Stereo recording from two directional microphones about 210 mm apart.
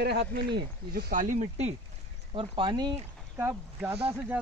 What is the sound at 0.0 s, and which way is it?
Speech, 50° right (ahead or behind).